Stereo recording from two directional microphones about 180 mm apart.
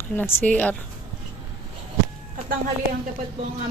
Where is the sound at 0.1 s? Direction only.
10° left (ahead or behind).